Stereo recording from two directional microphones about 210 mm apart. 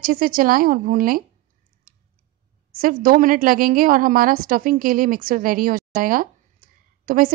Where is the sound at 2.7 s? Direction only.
40° right (ahead or behind).